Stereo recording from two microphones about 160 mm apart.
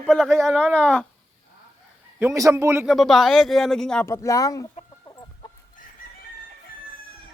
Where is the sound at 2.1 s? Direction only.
15° right (ahead or behind).